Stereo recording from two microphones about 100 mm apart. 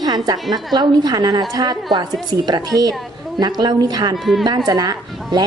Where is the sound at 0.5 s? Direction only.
45° right (ahead or behind).